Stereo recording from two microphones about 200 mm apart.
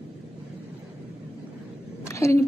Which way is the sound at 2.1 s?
15° left (ahead or behind).